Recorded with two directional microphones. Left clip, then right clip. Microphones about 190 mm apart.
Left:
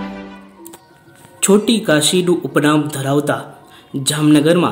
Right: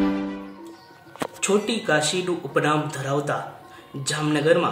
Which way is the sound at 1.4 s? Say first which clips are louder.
Left 9 dB; 45° left (ahead or behind).